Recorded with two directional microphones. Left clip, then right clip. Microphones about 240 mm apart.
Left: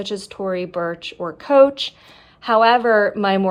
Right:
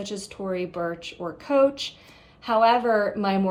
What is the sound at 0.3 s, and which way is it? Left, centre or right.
A woman's voice, left.